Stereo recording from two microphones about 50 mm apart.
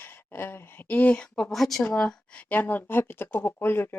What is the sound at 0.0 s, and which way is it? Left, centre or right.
Speech, left.